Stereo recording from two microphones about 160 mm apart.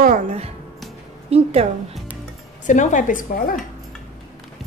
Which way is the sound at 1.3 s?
40° right (ahead or behind).